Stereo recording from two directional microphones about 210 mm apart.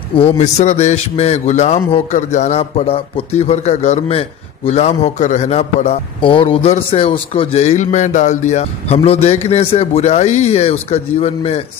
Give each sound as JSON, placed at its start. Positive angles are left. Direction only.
{"t": 0.1, "sound": "a man's voice", "side_deg": 30}